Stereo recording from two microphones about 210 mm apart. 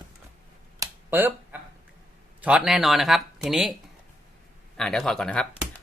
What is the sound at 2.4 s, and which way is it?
Speech, 5° right (ahead or behind).